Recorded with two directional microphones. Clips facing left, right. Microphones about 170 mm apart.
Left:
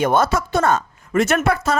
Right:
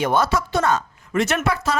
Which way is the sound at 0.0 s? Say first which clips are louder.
Left 2 dB; 50° left (ahead or behind).